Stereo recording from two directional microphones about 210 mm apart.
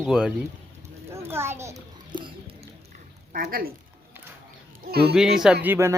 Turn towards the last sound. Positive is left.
turn(degrees=-10)  # may be behind; listen again after turning